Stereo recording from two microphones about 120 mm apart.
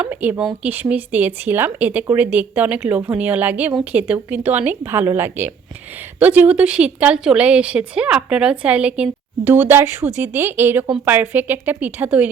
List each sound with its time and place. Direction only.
0.0 s speech: 15° right (ahead or behind)